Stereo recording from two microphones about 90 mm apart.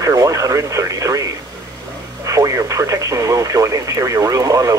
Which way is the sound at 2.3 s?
35° right (ahead or behind).